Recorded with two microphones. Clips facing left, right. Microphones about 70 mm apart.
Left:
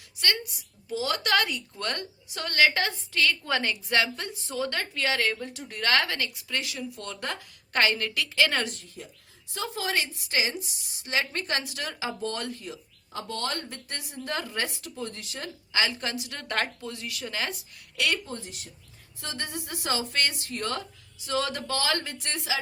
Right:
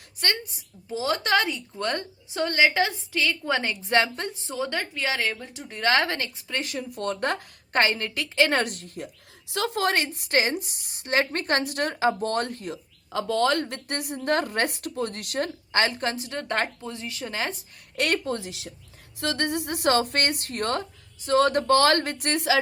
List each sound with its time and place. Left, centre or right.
0.2 s a woman's voice: right
7.7 s a woman's voice: right
8.6 s a woman's voice: right
9.5 s a woman's voice: right
13.1 s a woman's voice: right
17.9 s speech: right
18.3 s speech: right
19.2 s a woman's voice: right